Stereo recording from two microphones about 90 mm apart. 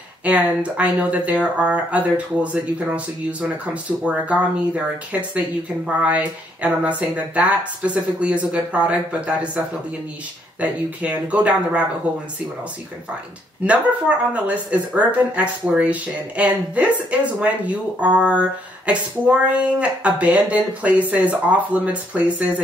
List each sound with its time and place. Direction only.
0.2 s speech: 15° right (ahead or behind)
10.6 s speech: 15° right (ahead or behind)
13.7 s speech: 15° right (ahead or behind)